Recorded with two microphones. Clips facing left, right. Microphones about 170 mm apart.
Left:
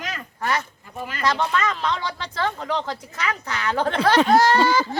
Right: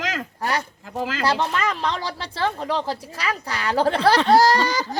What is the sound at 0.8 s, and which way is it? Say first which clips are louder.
Speech: right 5 dB; 90° right.